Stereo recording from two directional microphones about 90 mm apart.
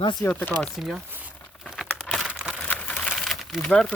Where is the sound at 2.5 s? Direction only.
10° left (ahead or behind).